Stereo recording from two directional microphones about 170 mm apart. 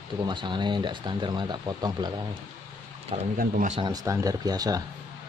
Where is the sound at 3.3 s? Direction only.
55° right (ahead or behind).